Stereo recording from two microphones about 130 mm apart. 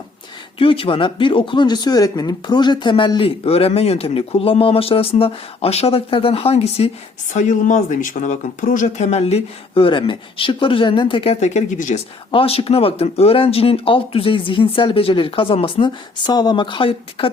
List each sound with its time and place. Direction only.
0.6 s speech: 45° left (ahead or behind)
7.3 s speech: 70° left (ahead or behind); by 11.3 s 45° left (ahead or behind)
11.3 s speech: 65° left (ahead or behind)
12.3 s speech: 45° left (ahead or behind)